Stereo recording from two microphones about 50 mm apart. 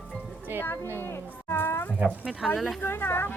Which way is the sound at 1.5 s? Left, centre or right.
Left.